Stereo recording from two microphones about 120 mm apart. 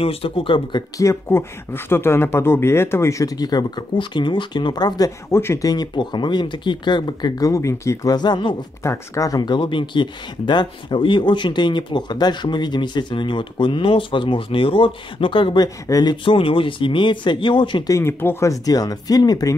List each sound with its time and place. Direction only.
0.0 s speech: 50° left (ahead or behind)
0.9 s speech: 25° left (ahead or behind)
5.3 s speech: 20° left (ahead or behind); by 8.6 s 40° left (ahead or behind)
8.8 s speech: 25° left (ahead or behind)
16.3 s speech: 45° left (ahead or behind)
17.9 s speech: 20° left (ahead or behind)